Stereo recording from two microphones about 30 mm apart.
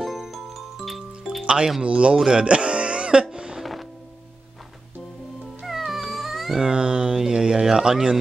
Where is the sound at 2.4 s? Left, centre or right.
Right.